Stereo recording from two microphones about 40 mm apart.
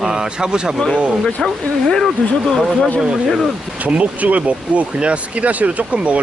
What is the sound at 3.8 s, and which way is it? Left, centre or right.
Speech, right.